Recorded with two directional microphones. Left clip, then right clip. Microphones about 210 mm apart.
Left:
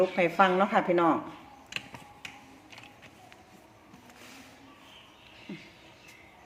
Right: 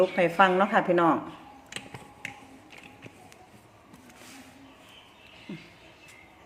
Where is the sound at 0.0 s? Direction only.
10° right (ahead or behind).